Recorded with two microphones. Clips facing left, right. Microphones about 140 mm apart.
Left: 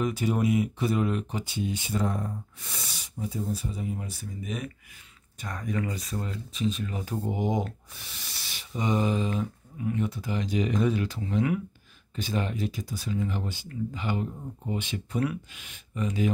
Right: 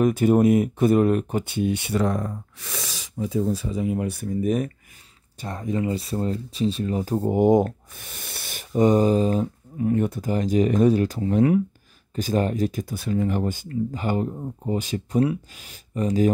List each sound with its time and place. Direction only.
0.0 s speech: 50° right (ahead or behind)
5.4 s speech: 25° right (ahead or behind)